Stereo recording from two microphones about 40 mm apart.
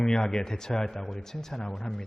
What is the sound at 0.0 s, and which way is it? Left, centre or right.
Speech, centre.